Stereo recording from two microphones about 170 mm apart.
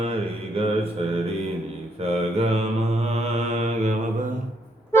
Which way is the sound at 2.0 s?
35° right (ahead or behind).